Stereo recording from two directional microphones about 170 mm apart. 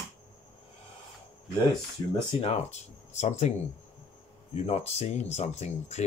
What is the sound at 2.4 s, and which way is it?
Speech, 40° left (ahead or behind).